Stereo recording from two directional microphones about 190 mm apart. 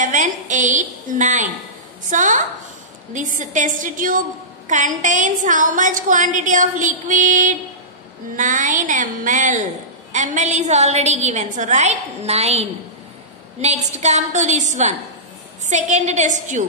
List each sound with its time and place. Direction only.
0.0 s a woman's voice: 40° right (ahead or behind)
13.9 s a woman's voice: 35° right (ahead or behind)